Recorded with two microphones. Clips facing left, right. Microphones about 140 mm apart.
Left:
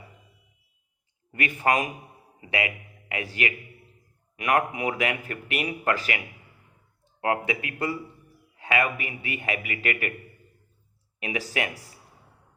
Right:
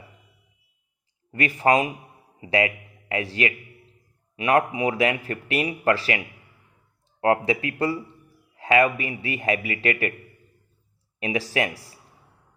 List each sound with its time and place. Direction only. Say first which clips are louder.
1.3 s a man's voice: right 4 dB; 35° right (ahead or behind)
11.2 s speech: right 4 dB; 35° right (ahead or behind)